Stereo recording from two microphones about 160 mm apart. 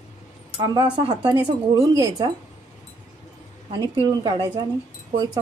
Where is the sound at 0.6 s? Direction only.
30° right (ahead or behind).